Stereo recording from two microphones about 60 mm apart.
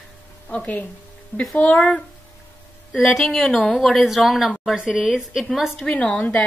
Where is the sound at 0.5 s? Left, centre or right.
Left.